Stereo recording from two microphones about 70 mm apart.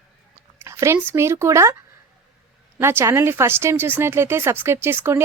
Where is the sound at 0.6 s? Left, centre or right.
Right.